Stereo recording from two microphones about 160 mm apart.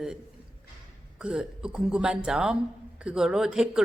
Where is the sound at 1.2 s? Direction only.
5° right (ahead or behind).